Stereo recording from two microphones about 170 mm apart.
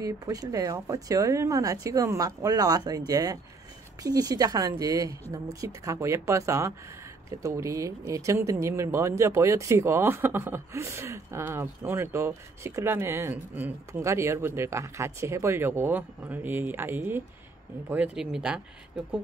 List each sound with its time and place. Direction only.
0.0 s speech: 20° right (ahead or behind); by 18.6 s 5° right (ahead or behind)